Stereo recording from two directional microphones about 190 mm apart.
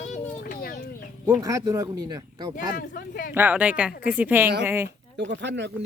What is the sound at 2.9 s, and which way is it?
Speech, 50° left (ahead or behind).